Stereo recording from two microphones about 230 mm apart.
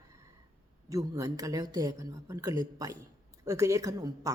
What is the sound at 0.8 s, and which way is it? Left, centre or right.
Speech, centre.